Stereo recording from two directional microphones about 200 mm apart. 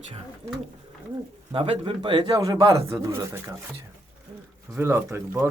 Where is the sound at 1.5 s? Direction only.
25° right (ahead or behind).